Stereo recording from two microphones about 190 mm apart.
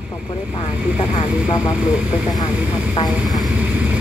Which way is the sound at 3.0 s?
Centre (ahead or behind).